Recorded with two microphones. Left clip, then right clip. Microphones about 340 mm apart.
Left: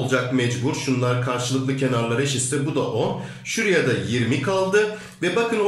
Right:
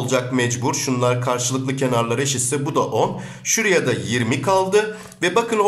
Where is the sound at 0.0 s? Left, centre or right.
Centre.